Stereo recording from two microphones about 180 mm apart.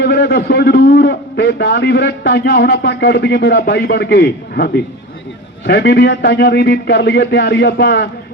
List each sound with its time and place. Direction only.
0.0 s a man's voice: 70° left (ahead or behind)